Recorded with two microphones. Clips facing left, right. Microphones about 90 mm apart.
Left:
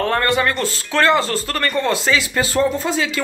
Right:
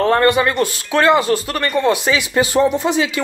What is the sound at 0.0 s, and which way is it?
Speech, 20° right (ahead or behind).